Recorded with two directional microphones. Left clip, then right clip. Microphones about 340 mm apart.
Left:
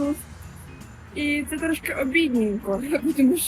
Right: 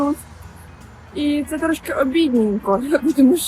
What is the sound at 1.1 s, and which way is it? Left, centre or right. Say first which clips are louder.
Speech: right 4 dB; centre.